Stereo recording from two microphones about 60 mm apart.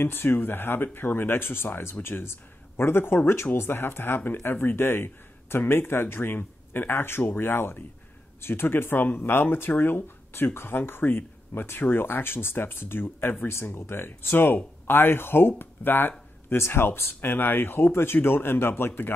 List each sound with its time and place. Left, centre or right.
0.0 s speech: left